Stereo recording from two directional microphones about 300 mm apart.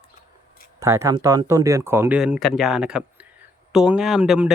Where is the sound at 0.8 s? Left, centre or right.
Centre.